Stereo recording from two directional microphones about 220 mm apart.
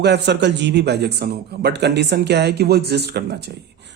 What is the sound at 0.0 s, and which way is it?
Speech, 50° right (ahead or behind).